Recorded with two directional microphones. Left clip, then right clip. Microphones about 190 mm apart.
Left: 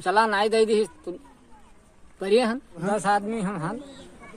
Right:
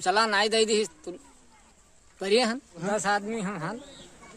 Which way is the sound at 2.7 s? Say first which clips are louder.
Left 4 dB; 10° right (ahead or behind).